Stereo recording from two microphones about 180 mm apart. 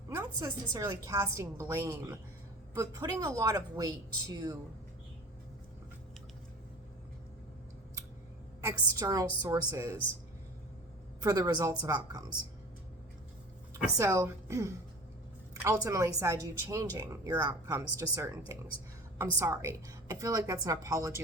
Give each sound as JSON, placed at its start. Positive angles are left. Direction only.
{"t": 0.1, "sound": "speech", "side_deg": -15}
{"t": 8.6, "sound": "speech", "side_deg": -20}
{"t": 11.2, "sound": "speech", "side_deg": -20}
{"t": 14.0, "sound": "speech", "side_deg": -15}